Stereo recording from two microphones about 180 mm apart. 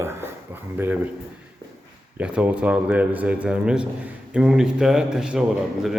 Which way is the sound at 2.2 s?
5° right (ahead or behind).